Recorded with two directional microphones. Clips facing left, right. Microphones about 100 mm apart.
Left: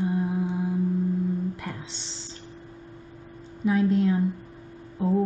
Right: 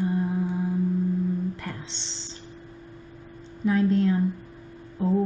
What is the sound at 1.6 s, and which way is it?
Music, 5° left (ahead or behind).